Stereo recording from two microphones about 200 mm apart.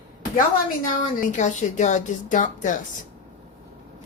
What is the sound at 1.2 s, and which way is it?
A woman's voice, 40° left (ahead or behind).